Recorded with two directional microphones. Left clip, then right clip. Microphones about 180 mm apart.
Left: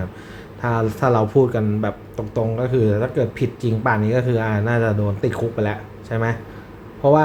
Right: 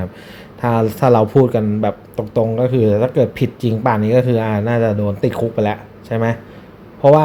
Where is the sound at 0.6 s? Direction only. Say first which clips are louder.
Right 5 dB; 30° right (ahead or behind).